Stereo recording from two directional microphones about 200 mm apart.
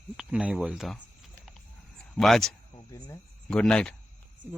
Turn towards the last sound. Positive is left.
turn(degrees=5)  # may be behind; listen again after turning